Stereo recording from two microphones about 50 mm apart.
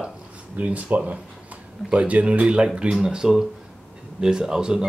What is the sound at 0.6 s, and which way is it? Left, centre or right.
Speech, right.